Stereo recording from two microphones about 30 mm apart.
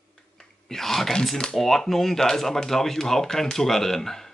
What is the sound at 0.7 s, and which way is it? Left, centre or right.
Speech, centre.